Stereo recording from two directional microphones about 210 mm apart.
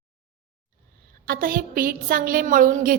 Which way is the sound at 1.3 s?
45° right (ahead or behind).